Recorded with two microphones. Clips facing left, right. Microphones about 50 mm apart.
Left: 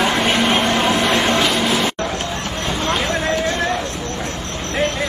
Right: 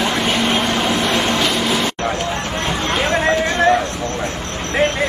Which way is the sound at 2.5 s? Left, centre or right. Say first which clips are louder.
Even; right.